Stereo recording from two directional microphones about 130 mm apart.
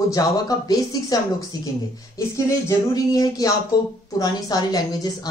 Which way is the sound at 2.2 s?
25° left (ahead or behind).